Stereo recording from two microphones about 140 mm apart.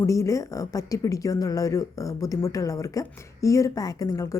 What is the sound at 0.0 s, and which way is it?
Speech, 20° left (ahead or behind).